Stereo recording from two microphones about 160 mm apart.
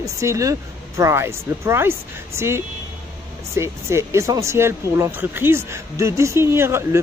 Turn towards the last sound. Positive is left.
turn(degrees=-15)  # may be behind; listen again after turning